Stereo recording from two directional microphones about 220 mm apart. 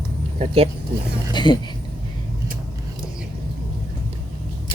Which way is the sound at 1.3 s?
20° left (ahead or behind).